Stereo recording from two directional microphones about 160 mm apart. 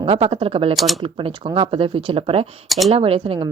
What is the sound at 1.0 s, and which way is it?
A woman's voice, 35° right (ahead or behind).